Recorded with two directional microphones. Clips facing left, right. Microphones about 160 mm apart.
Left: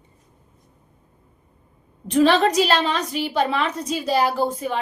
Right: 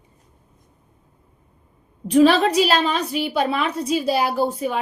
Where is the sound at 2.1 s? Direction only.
10° right (ahead or behind).